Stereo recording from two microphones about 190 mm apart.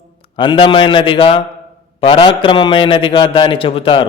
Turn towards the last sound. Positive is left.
turn(degrees=30)  # may be behind; listen again after turning